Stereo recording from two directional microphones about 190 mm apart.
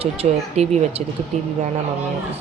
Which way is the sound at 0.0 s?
35° right (ahead or behind).